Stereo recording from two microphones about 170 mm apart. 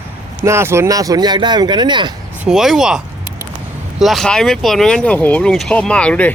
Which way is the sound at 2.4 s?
Centre (ahead or behind).